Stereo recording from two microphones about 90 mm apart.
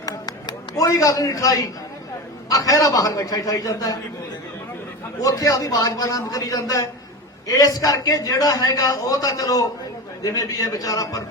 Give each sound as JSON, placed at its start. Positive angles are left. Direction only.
{"t": 0.0, "sound": "a sound", "side_deg": 45}
{"t": 2.5, "sound": "a man's voice", "side_deg": 40}
{"t": 5.2, "sound": "a man's voice", "side_deg": 40}